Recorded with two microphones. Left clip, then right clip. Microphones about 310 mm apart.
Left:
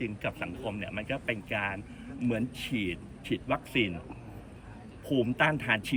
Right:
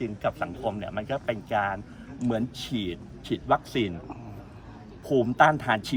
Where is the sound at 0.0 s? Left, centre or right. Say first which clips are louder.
Right 6 dB; right.